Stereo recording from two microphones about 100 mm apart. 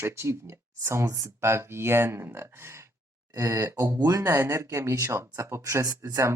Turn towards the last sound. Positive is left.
turn(degrees=-30)  # may be behind; listen again after turning